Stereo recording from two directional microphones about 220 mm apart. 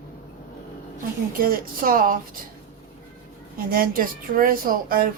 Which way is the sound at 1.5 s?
40° right (ahead or behind).